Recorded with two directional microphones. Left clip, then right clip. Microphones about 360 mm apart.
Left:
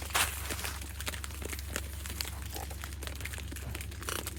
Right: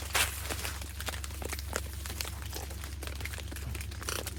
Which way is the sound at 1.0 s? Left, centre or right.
Centre.